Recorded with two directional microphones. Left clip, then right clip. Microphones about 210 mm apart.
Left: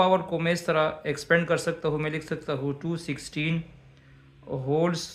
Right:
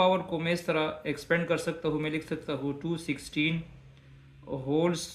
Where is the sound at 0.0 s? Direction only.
45° left (ahead or behind).